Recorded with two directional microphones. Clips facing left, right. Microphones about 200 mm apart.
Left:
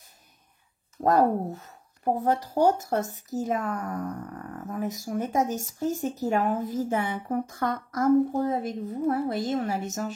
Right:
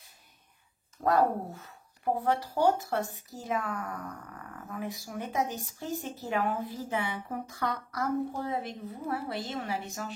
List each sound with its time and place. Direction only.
1.0 s speech: 40° left (ahead or behind)